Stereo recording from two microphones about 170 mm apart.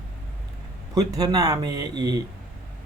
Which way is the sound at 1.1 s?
20° right (ahead or behind).